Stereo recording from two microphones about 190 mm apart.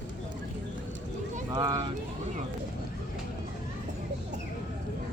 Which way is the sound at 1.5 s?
25° right (ahead or behind).